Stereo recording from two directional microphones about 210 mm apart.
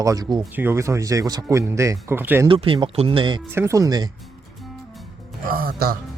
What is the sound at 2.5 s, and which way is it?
Speech, 25° right (ahead or behind).